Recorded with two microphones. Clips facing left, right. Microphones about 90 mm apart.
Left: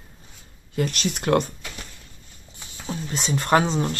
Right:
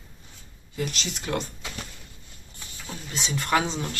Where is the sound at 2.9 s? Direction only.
40° left (ahead or behind).